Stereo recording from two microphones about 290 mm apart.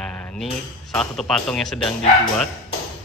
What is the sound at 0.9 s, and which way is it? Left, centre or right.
Speech, centre.